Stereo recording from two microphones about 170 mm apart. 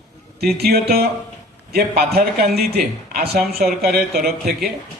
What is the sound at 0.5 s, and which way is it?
A man's voice, 70° right (ahead or behind).